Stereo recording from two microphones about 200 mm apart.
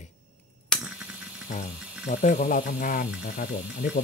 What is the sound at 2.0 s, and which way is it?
Speech, 40° left (ahead or behind).